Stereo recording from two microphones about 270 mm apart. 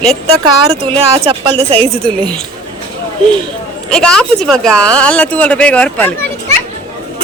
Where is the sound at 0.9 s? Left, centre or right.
Right.